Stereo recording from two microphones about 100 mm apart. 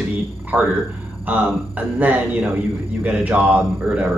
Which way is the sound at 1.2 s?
15° right (ahead or behind).